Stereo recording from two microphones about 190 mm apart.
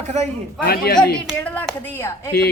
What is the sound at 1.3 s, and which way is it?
Speech, 10° left (ahead or behind).